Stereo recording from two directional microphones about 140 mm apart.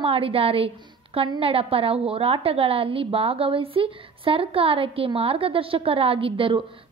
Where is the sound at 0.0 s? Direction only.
40° right (ahead or behind).